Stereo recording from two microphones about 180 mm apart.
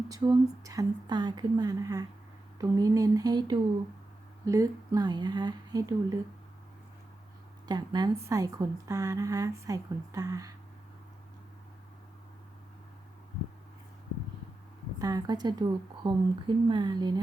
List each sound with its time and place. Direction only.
0.2 s a woman's voice: 25° right (ahead or behind)
7.7 s a woman's voice: 25° right (ahead or behind)
14.9 s a woman's voice: 20° right (ahead or behind)